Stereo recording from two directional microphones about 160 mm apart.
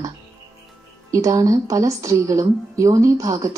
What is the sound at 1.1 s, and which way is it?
A woman's voice, 20° right (ahead or behind).